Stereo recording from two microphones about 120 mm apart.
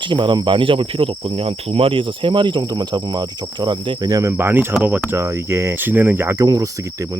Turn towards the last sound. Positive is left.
turn(degrees=-30)  # may be behind; listen again after turning